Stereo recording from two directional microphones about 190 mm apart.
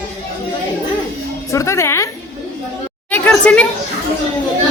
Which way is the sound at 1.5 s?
15° left (ahead or behind).